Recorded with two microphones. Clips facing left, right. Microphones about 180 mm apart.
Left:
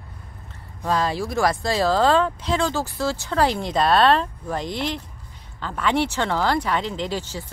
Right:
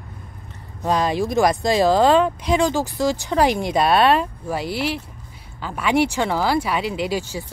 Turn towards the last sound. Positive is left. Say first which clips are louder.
# right 4 dB
turn(degrees=-10)  # may be behind; listen again after turning